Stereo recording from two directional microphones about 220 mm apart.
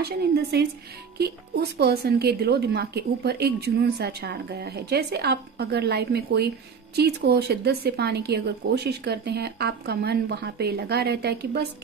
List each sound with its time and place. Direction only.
0.0 s speech: 45° right (ahead or behind)